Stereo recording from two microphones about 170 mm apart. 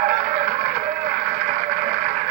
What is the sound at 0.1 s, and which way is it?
Vehicle, 35° right (ahead or behind).